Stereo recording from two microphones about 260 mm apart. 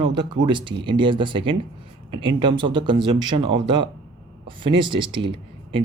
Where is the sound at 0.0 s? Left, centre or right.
Centre.